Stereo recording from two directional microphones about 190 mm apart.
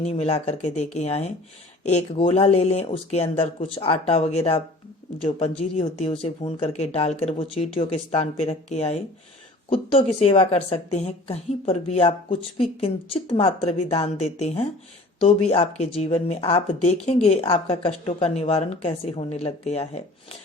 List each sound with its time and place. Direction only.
0.0 s speech: 35° left (ahead or behind)